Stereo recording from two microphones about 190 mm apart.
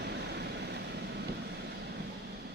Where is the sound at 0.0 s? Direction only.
60° right (ahead or behind).